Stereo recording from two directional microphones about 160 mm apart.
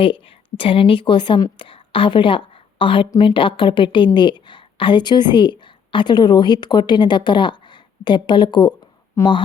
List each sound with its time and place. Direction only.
0.0 s a woman's voice: 35° left (ahead or behind)